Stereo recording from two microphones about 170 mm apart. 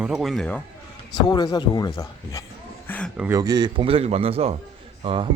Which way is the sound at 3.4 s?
25° right (ahead or behind).